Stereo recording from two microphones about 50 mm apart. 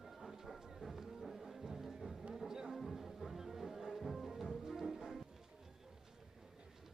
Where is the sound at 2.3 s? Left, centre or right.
Centre.